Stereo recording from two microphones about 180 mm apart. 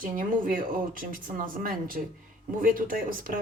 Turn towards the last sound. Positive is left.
turn(degrees=-50)  # may be behind; listen again after turning